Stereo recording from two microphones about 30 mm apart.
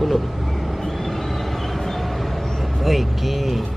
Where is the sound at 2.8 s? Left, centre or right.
Centre.